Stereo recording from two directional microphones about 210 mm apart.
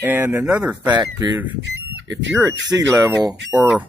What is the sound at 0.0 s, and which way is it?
Speech, 10° right (ahead or behind).